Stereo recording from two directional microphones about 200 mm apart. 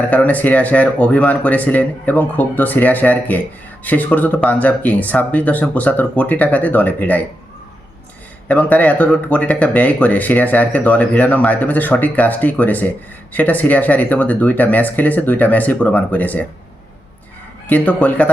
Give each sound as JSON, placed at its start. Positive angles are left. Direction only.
{"t": 0.1, "sound": "speech", "side_deg": 10}
{"t": 8.4, "sound": "speech", "side_deg": 10}
{"t": 17.7, "sound": "speech", "side_deg": 10}